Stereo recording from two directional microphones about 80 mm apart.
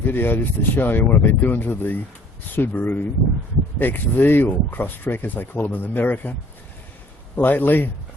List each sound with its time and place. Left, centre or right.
0.0 s speech: left
7.3 s speech: left